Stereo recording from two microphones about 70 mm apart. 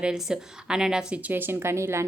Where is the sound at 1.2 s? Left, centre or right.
Right.